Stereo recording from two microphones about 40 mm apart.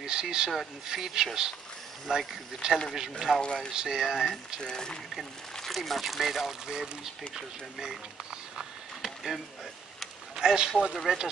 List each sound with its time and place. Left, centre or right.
0.0 s speech: centre
3.0 s speech: centre
3.3 s speech: left
3.7 s speech: centre
4.6 s speech: centre
5.6 s speech: centre
8.5 s a sound: centre
10.3 s a sound: centre
10.9 s speech: centre